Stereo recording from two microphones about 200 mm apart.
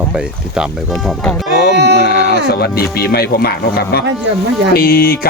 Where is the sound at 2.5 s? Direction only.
50° left (ahead or behind).